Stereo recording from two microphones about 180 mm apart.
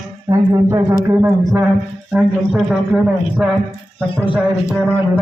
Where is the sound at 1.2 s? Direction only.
Centre (ahead or behind).